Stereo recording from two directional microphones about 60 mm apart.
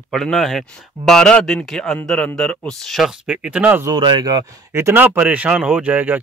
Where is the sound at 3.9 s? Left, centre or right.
Right.